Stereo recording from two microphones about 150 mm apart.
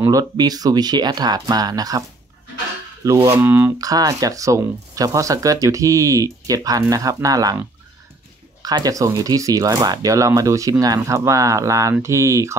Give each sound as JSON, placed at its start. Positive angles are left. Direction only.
{"t": 0.0, "sound": "speech", "side_deg": -25}
{"t": 3.3, "sound": "speech", "side_deg": -15}
{"t": 3.7, "sound": "speech", "side_deg": -25}
{"t": 8.6, "sound": "speech", "side_deg": -25}